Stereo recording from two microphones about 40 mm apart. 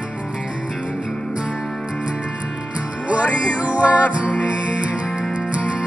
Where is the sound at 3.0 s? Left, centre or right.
Right.